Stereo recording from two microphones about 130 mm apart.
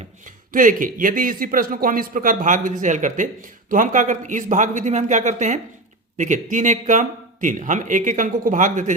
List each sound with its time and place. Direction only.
0.3 s a man's voice: 90° right